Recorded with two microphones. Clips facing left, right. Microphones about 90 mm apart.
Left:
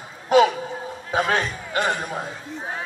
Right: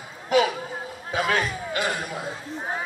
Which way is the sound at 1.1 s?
35° left (ahead or behind).